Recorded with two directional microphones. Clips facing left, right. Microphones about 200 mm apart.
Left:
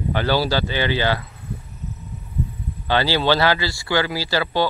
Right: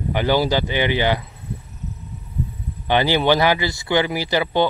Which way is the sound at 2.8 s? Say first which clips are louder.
Right 2 dB; 20° right (ahead or behind).